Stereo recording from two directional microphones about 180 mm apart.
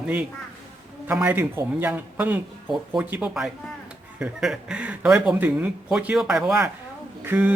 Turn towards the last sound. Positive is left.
turn(degrees=-10)  # may be behind; listen again after turning